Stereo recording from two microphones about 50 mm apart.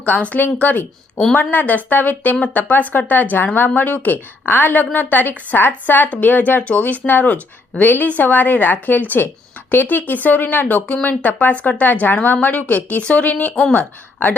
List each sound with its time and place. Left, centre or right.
0.0 s a woman's voice: left